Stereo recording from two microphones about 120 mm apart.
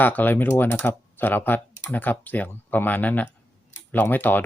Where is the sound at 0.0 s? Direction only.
15° left (ahead or behind).